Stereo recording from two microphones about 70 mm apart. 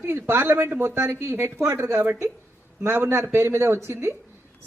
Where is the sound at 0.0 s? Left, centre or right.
Right.